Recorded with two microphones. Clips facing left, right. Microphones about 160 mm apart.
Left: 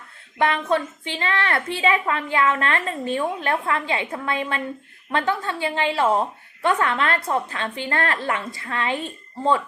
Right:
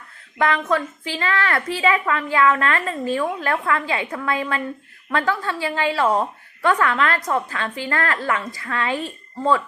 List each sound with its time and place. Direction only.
0.3 s a woman's voice: 25° left (ahead or behind)